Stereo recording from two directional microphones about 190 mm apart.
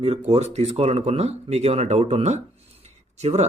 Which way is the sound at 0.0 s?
30° right (ahead or behind).